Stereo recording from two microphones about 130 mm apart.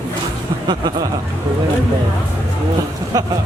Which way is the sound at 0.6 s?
35° right (ahead or behind).